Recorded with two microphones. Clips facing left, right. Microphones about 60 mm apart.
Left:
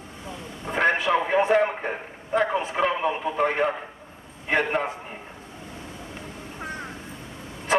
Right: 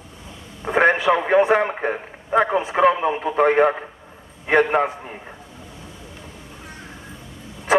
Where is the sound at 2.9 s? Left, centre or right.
Right.